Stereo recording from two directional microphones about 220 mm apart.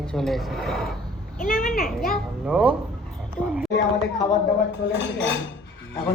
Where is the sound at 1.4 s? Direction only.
40° left (ahead or behind).